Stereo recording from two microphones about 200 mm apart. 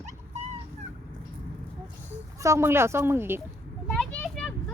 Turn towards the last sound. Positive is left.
turn(degrees=5)  # may be behind; listen again after turning